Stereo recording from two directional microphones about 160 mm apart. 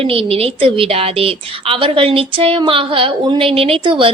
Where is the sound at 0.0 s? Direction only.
35° right (ahead or behind).